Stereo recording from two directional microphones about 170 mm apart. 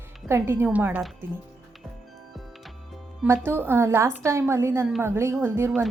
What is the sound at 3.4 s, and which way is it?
A woman's voice, 15° right (ahead or behind).